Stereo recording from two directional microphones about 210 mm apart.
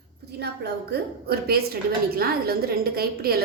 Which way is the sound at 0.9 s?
45° right (ahead or behind).